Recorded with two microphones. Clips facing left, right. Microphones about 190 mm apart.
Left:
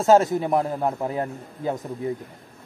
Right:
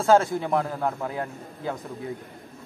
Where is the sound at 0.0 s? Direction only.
20° left (ahead or behind).